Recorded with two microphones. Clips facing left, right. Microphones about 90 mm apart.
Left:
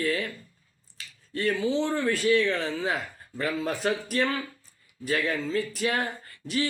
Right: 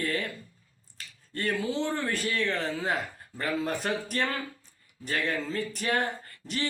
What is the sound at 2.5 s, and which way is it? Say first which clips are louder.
Speech: left 2 dB; 40° right (ahead or behind).